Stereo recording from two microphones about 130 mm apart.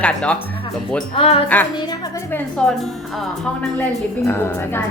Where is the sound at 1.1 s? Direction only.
50° left (ahead or behind).